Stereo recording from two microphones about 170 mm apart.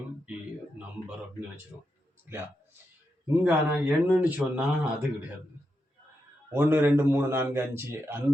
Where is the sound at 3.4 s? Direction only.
5° right (ahead or behind).